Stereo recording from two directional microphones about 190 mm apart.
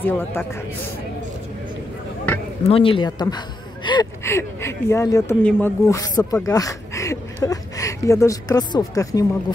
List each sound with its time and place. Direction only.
0.0 s speech: 10° left (ahead or behind)
2.6 s speech: 30° left (ahead or behind)
6.4 s a sound: 15° left (ahead or behind)
7.4 s speech: 15° left (ahead or behind)